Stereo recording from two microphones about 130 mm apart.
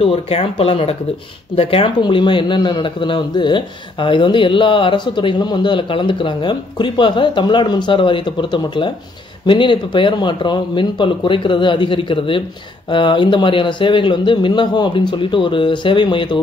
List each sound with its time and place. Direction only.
0.0 s speech: 50° left (ahead or behind)